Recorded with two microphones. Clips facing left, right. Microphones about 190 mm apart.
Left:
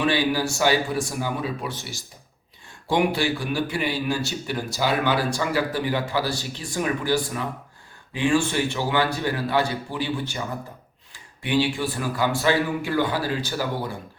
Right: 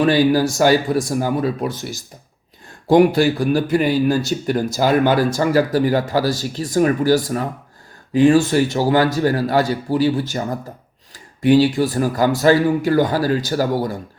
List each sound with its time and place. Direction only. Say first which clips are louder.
0.0 s speech: right 8 dB; 40° right (ahead or behind)